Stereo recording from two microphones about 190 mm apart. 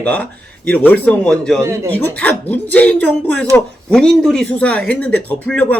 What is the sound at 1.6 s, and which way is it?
Speech, 15° right (ahead or behind).